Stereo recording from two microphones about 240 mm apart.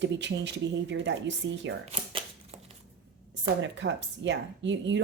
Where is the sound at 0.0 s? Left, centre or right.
Right.